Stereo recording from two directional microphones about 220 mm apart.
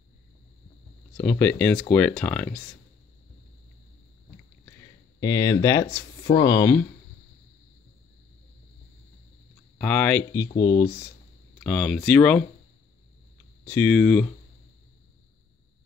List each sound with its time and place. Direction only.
1.1 s speech: 5° left (ahead or behind)
5.2 s speech: 15° left (ahead or behind)
9.8 s speech: 5° left (ahead or behind)
11.6 s speech: 5° left (ahead or behind)
13.7 s speech: 10° left (ahead or behind)